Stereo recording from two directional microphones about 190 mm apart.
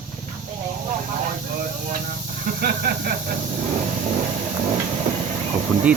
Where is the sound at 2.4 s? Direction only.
50° right (ahead or behind).